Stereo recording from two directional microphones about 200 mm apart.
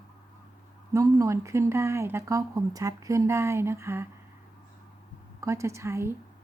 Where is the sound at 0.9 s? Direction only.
15° right (ahead or behind).